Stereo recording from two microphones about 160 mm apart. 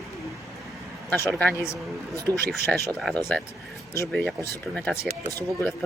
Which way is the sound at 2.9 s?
Centre (ahead or behind).